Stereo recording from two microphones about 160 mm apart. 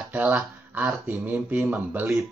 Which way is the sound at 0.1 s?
10° right (ahead or behind).